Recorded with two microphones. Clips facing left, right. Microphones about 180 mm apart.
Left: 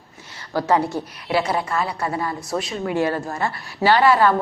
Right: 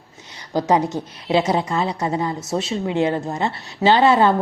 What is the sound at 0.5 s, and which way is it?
A woman's voice, 20° right (ahead or behind).